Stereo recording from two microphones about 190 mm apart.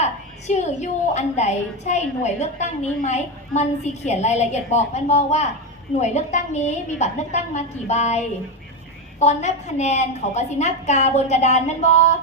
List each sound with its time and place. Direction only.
0.0 s a woman's voice: 35° left (ahead or behind)